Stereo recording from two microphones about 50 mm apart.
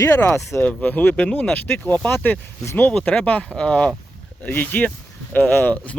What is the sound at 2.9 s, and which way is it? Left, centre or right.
Speech, centre.